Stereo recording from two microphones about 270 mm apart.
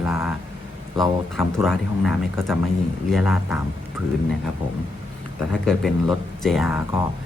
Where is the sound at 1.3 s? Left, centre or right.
Centre.